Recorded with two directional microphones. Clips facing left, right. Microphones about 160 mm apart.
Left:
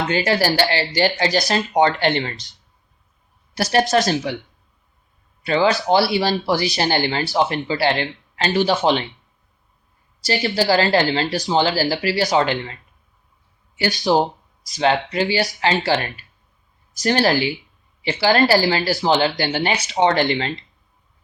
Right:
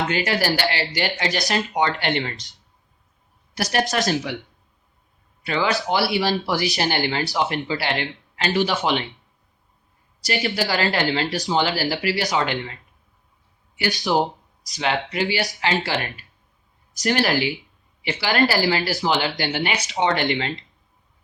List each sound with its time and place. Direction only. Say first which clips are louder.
0.1 s speech: left 3 dB; 30° left (ahead or behind)
3.5 s speech: left 5 dB; 30° left (ahead or behind)
10.2 s speech: left 5 dB; 30° left (ahead or behind)
14.0 s speech: left 4 dB; 30° left (ahead or behind)